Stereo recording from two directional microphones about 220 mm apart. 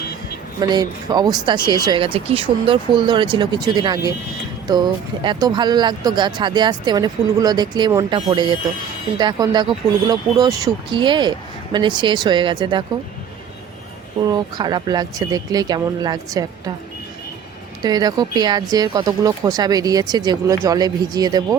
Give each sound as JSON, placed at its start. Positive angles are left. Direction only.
{"t": 0.6, "sound": "speech", "side_deg": -20}
{"t": 14.3, "sound": "speech", "side_deg": -20}
{"t": 17.8, "sound": "speech", "side_deg": -15}